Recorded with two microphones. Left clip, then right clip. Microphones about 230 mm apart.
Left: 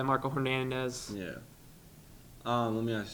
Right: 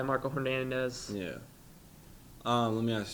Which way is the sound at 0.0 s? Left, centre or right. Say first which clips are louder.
Left 1 dB; left.